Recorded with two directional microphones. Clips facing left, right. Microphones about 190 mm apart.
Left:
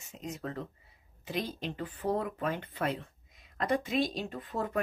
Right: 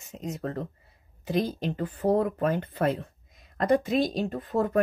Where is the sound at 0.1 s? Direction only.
45° right (ahead or behind).